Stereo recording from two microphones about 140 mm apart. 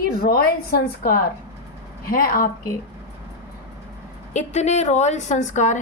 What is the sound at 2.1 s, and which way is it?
Speech, 90° left.